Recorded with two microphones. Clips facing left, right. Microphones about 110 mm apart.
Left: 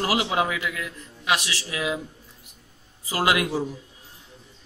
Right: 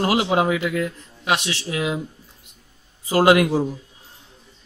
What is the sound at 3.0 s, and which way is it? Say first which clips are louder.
Speech: right 8 dB; 30° right (ahead or behind).